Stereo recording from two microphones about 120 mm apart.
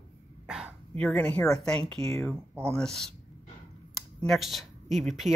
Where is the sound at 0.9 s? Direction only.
15° left (ahead or behind).